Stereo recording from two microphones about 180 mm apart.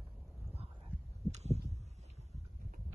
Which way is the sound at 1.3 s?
35° right (ahead or behind).